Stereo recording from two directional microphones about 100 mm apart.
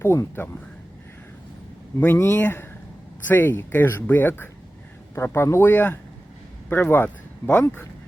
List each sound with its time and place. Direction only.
0.0 s speech: 25° left (ahead or behind)
2.0 s speech: 20° left (ahead or behind)